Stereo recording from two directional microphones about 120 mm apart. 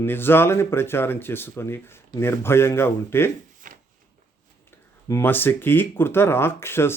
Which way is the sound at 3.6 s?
90° right.